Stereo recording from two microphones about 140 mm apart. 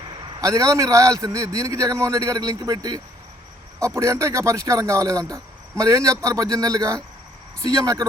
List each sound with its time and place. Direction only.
0.3 s speech: 25° right (ahead or behind)